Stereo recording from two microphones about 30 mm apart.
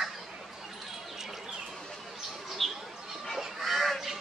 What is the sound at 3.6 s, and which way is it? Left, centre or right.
Goose, centre.